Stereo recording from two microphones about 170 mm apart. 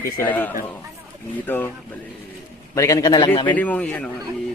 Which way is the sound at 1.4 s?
10° left (ahead or behind).